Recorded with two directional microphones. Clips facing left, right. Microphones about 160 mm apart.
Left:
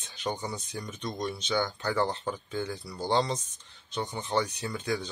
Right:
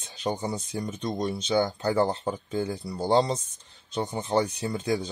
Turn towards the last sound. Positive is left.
turn(degrees=-30)  # may be behind; listen again after turning